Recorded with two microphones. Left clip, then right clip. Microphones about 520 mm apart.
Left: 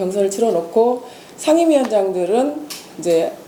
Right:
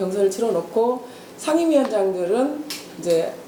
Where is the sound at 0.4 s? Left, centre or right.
Left.